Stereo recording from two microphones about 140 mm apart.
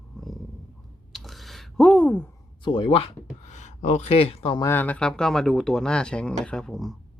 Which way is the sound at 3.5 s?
55° left (ahead or behind).